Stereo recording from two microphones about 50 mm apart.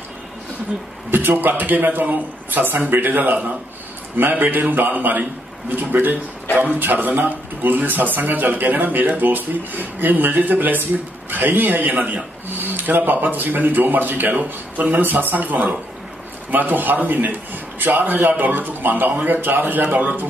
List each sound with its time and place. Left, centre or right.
1.1 s a man's voice: right